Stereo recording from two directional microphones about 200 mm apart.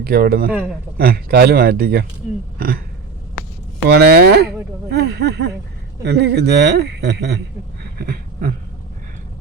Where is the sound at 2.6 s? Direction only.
45° right (ahead or behind).